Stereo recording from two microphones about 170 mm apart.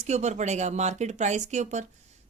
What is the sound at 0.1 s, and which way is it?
Speech, 40° right (ahead or behind).